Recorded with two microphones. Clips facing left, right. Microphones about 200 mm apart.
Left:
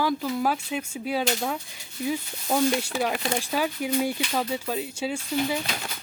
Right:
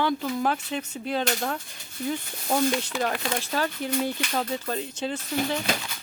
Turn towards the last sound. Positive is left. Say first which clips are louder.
# left 1 dB
turn(degrees=10)  # may be behind; listen again after turning